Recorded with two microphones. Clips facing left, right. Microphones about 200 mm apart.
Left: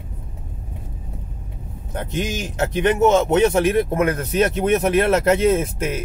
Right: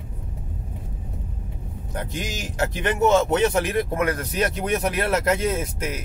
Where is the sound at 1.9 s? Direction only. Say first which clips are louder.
Left 6 dB; 25° left (ahead or behind).